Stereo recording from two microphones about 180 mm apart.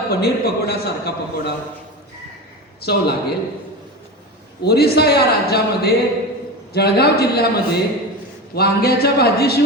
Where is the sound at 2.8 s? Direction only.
60° left (ahead or behind).